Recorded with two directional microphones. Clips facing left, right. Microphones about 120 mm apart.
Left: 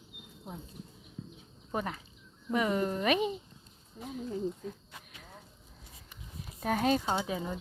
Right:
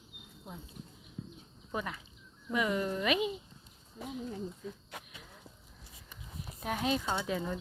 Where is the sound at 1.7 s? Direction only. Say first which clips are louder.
Left 3 dB; 40° left (ahead or behind).